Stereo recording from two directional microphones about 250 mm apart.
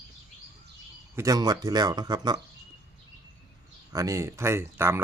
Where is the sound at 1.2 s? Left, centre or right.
Centre.